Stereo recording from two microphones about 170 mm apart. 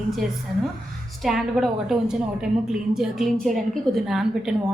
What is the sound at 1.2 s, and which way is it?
A woman's voice, centre (ahead or behind).